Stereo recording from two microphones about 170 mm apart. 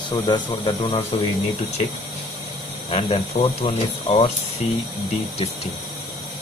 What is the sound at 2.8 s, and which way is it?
Speech, 35° left (ahead or behind).